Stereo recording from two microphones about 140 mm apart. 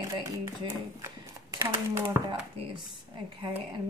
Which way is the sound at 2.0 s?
35° right (ahead or behind).